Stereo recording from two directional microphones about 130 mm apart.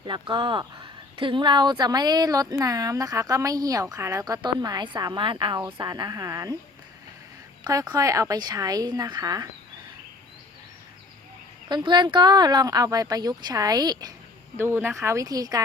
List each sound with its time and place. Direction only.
0.0 s speech: 40° right (ahead or behind)
7.6 s speech: 30° right (ahead or behind)
11.7 s speech: 35° right (ahead or behind)
14.5 s speech: 20° right (ahead or behind)